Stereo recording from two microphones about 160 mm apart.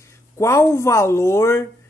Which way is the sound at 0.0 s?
15° left (ahead or behind).